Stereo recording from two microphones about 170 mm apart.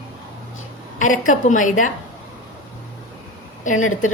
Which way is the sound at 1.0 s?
50° left (ahead or behind).